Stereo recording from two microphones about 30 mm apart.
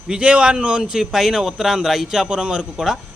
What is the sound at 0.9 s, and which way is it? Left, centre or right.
Speech, centre.